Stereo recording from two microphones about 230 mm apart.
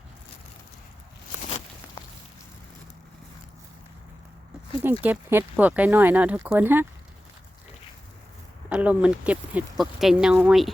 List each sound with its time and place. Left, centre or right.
1.4 s a sound: left
4.8 s speech: centre
8.7 s speech: centre